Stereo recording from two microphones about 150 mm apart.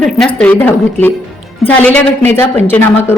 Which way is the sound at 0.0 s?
5° left (ahead or behind).